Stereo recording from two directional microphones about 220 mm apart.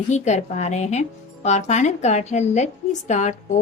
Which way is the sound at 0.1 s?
30° left (ahead or behind).